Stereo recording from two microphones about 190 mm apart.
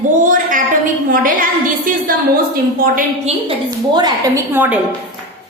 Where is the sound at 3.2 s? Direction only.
25° right (ahead or behind).